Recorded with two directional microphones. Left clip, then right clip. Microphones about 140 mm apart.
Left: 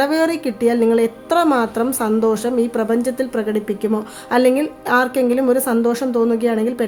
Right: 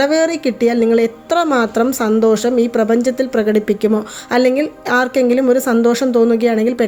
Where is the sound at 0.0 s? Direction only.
15° right (ahead or behind); by 4.0 s 30° right (ahead or behind).